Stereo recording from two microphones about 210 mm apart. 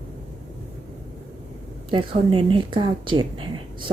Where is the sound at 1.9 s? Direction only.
25° right (ahead or behind).